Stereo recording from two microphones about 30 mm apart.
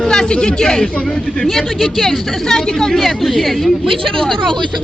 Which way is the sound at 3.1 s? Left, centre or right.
Centre.